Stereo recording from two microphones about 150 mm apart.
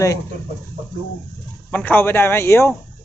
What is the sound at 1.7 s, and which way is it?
Speech, 10° left (ahead or behind).